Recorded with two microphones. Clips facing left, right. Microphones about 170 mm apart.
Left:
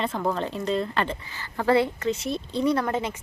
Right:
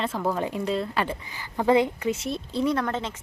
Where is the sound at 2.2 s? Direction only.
Centre (ahead or behind).